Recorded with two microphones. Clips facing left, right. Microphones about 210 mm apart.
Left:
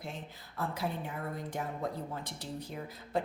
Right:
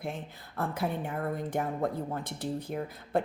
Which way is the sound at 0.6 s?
50° right (ahead or behind).